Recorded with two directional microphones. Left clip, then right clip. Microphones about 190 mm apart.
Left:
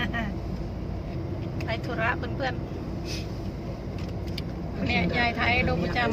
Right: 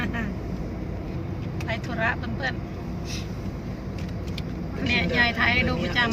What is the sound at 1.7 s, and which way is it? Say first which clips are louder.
Speech: right 1 dB; 10° left (ahead or behind).